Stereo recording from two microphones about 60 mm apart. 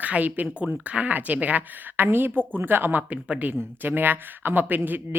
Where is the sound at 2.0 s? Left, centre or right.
Right.